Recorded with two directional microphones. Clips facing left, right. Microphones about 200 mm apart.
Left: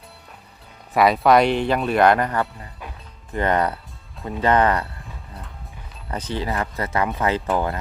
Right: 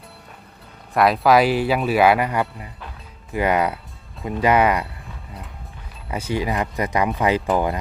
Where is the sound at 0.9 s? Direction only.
Centre (ahead or behind).